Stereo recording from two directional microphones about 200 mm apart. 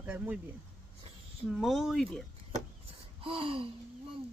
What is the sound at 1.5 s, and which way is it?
Speech, centre (ahead or behind).